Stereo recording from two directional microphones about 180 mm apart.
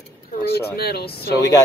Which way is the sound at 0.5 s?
60° left (ahead or behind).